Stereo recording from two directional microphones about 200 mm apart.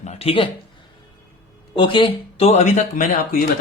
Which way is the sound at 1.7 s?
25° left (ahead or behind).